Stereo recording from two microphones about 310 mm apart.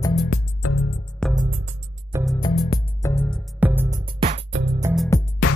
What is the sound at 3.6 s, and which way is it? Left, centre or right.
Music, centre.